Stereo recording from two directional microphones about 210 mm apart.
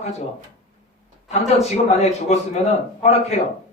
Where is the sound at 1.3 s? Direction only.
30° left (ahead or behind).